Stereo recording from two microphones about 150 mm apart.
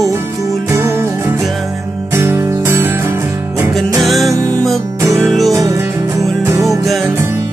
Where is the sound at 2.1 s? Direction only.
15° right (ahead or behind).